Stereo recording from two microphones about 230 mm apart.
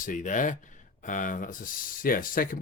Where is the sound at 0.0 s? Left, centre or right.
Left.